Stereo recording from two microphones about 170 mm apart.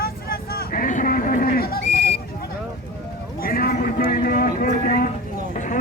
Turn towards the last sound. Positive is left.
turn(degrees=60)  # may be behind; listen again after turning